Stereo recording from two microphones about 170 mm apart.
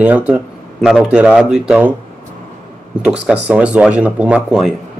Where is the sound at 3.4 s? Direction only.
5° right (ahead or behind).